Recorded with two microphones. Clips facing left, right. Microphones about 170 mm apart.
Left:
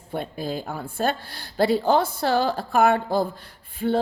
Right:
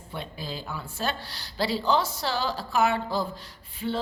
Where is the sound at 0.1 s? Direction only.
50° left (ahead or behind).